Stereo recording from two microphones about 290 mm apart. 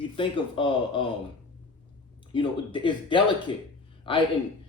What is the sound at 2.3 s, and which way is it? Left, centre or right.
Speech, centre.